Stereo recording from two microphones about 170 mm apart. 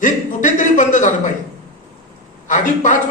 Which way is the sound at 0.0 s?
50° left (ahead or behind).